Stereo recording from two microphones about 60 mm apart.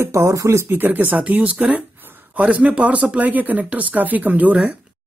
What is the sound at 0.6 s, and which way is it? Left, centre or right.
Speech, right.